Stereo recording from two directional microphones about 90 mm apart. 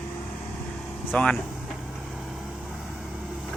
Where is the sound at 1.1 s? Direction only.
10° left (ahead or behind).